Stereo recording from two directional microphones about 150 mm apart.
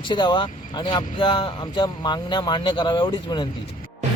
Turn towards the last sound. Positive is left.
turn(degrees=30)  # may be behind; listen again after turning